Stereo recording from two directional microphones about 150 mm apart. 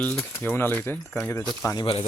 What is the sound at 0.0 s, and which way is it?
Speech, 10° left (ahead or behind).